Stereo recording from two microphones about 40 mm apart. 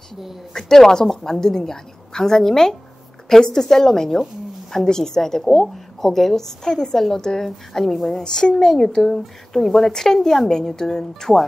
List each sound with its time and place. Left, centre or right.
0.1 s speech: centre
0.5 s a woman's voice: centre
8.2 s a woman's voice: centre